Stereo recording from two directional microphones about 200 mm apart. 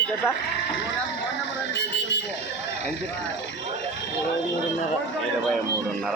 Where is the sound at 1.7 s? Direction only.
60° left (ahead or behind).